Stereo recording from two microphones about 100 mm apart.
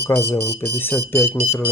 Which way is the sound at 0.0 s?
25° left (ahead or behind).